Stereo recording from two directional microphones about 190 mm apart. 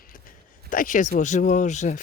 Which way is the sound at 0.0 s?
45° left (ahead or behind).